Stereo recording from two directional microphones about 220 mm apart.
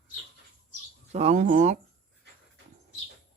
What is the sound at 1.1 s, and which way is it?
Speech, 30° right (ahead or behind).